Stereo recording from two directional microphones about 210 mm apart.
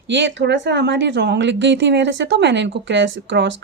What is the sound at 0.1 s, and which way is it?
Speech, 60° right (ahead or behind).